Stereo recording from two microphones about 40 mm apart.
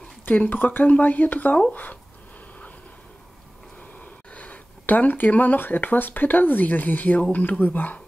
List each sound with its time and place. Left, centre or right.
0.5 s speech: left
4.0 s speech: left